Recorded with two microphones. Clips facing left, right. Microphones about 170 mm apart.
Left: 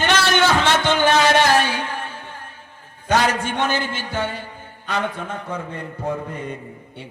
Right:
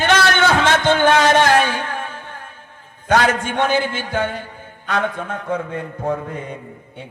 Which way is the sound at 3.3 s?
50° right (ahead or behind).